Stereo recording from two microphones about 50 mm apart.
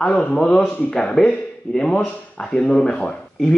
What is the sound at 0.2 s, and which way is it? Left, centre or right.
Speech, centre.